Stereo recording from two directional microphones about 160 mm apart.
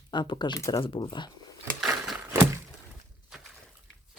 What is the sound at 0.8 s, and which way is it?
Speech, 30° left (ahead or behind).